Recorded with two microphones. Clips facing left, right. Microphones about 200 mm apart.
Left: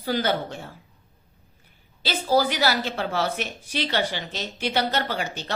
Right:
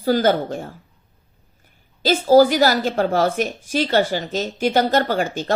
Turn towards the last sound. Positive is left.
turn(degrees=-45)  # may be behind; listen again after turning